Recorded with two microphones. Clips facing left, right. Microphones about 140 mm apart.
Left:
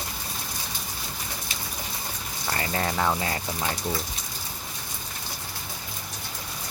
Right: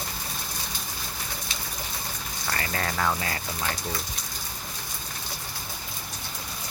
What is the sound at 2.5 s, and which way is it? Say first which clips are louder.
Speech: left 3 dB; 20° left (ahead or behind).